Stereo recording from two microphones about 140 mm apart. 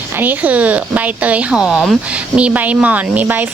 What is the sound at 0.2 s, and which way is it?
A woman's voice, 10° right (ahead or behind).